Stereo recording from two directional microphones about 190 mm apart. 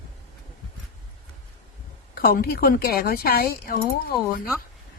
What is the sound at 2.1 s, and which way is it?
Speech, 55° left (ahead or behind).